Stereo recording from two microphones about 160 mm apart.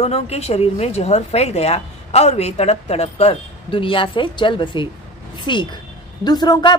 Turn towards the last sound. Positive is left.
turn(degrees=25)  # may be behind; listen again after turning